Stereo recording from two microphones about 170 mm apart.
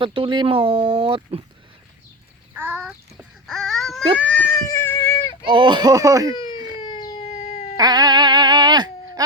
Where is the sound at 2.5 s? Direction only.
10° right (ahead or behind).